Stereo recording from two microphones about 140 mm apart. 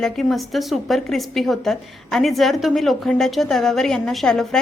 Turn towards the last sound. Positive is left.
turn(degrees=5)  # may be behind; listen again after turning